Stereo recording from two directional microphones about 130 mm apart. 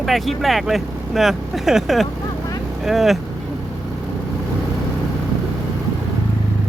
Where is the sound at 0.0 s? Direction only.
Centre (ahead or behind).